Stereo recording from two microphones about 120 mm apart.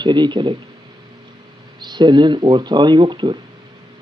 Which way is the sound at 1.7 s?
40° right (ahead or behind).